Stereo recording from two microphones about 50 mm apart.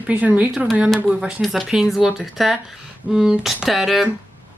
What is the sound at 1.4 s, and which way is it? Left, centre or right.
Speech, centre.